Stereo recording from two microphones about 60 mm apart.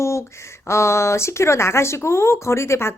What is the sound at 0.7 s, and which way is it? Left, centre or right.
Speech, left.